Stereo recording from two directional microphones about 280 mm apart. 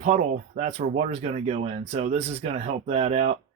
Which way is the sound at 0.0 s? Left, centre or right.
Right.